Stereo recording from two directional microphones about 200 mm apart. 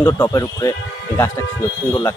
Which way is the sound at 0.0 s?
15° left (ahead or behind).